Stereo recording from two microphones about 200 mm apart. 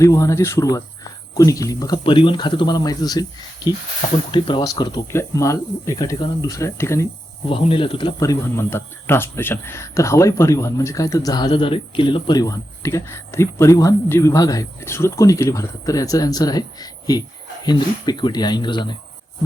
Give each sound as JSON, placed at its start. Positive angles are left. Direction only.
{"t": 0.0, "sound": "speech", "side_deg": 15}
{"t": 7.5, "sound": "speech", "side_deg": 25}